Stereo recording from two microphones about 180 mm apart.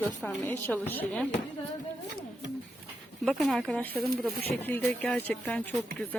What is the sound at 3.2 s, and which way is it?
Speech, centre (ahead or behind).